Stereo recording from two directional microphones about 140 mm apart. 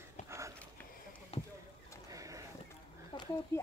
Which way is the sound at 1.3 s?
45° left (ahead or behind).